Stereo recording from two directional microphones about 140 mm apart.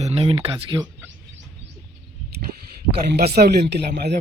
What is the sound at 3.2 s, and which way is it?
Speech, 90° right.